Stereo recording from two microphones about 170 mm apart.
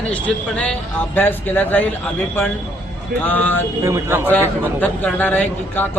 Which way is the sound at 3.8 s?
15° right (ahead or behind).